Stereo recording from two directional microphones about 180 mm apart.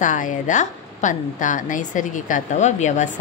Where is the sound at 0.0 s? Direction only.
45° left (ahead or behind).